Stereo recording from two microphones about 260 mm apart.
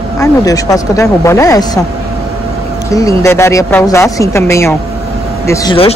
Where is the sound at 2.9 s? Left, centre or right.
Centre.